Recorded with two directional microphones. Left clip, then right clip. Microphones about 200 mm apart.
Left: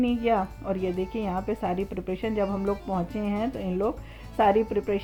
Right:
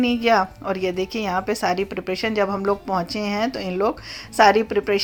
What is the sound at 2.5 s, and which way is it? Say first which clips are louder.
Speech: right 7 dB; 20° right (ahead or behind).